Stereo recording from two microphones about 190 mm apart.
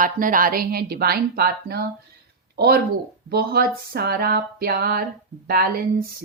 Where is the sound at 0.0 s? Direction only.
45° right (ahead or behind).